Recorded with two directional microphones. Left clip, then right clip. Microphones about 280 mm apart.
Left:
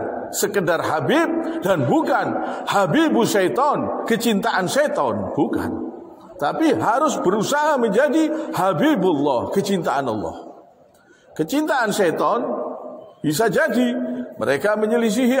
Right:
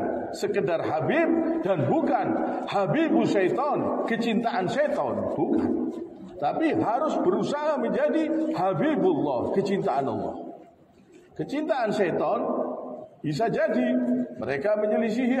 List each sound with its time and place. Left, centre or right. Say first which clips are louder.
0.4 s a man's voice: left 7 dB; left
6.4 s a man's voice: left 6 dB; left
11.3 s a man's voice: left 7 dB; left